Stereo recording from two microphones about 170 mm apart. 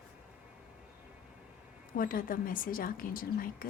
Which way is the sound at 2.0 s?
55° left (ahead or behind).